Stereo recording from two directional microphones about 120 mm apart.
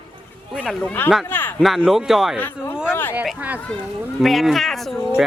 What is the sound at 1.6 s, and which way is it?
Speech, centre (ahead or behind).